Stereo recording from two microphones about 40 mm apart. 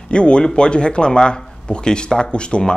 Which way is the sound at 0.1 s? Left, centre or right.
Left.